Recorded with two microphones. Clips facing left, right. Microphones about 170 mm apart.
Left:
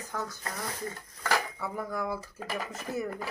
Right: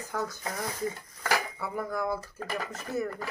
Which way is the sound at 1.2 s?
Centre (ahead or behind).